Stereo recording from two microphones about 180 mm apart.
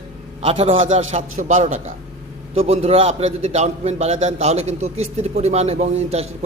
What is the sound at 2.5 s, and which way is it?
A man's voice, 35° right (ahead or behind).